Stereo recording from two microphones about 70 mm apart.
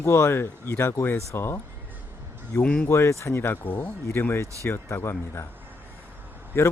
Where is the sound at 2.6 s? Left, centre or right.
Centre.